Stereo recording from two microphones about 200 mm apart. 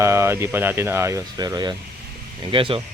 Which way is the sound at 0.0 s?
15° right (ahead or behind).